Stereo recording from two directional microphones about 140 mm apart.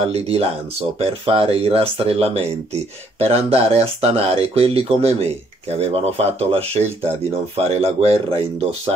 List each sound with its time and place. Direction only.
0.0 s speech: 45° right (ahead or behind)
6.8 s speech: 15° right (ahead or behind)
7.5 s speech: 45° right (ahead or behind)